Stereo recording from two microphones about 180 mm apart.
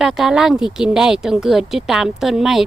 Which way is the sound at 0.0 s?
Centre (ahead or behind).